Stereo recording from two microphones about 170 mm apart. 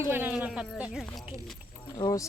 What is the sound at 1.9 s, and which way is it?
Speech, 20° left (ahead or behind).